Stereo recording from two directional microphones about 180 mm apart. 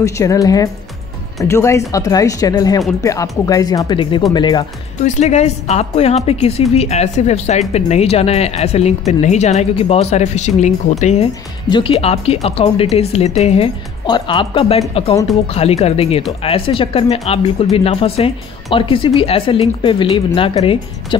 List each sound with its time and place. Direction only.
0.0 s speech: 15° left (ahead or behind)
5.0 s a woman's voice: 40° left (ahead or behind)
14.0 s a woman's voice: 25° left (ahead or behind)